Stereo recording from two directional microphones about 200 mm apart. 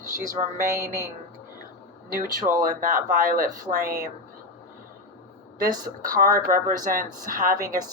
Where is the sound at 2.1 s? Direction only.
45° right (ahead or behind).